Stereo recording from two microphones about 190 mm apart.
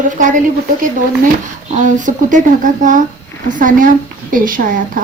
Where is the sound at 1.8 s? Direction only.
40° right (ahead or behind).